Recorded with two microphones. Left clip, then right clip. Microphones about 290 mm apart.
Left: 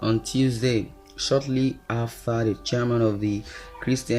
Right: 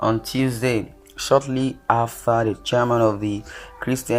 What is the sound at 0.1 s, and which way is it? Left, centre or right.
Speech, centre.